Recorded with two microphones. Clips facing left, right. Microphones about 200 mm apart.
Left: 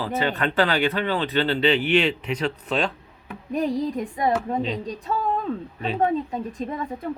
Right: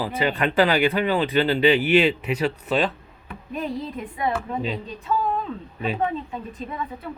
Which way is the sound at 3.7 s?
15° left (ahead or behind).